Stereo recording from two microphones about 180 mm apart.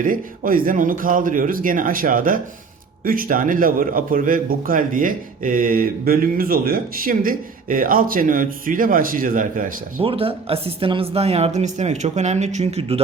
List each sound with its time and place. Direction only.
0.0 s a man's voice: 50° right (ahead or behind)
10.0 s speech: 30° right (ahead or behind)